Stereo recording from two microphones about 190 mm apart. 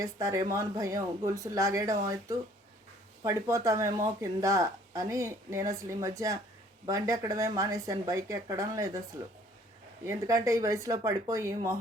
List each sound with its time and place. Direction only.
0.0 s speech: 15° right (ahead or behind)
10.0 s speech: 15° right (ahead or behind)